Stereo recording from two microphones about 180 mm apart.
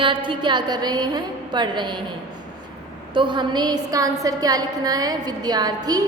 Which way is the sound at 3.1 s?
25° right (ahead or behind).